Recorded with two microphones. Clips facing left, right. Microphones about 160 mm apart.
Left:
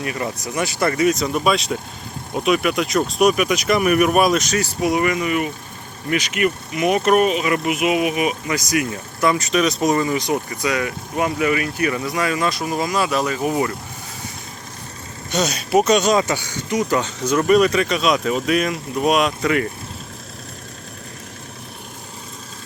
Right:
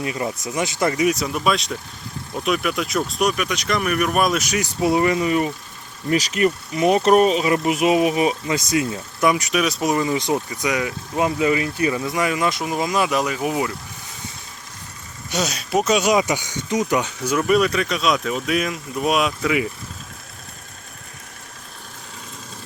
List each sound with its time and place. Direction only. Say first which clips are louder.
0.0 s speech: even; 20° right (ahead or behind); by 4.4 s 5° left (ahead or behind)
4.4 s speech: left 2 dB; 15° right (ahead or behind)
4.8 s speech: right 2 dB; 25° right (ahead or behind)
9.3 s speech: left 2 dB; 10° right (ahead or behind)
10.1 s speech: even; 25° right (ahead or behind); by 13.7 s 10° right (ahead or behind)
15.3 s speech: left 4 dB; 5° right (ahead or behind)